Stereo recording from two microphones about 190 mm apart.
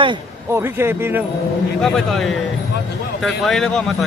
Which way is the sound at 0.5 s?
10° right (ahead or behind).